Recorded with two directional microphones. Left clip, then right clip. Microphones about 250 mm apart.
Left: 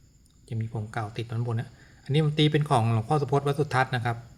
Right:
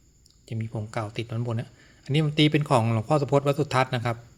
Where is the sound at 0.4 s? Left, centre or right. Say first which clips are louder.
Right 2 dB; centre.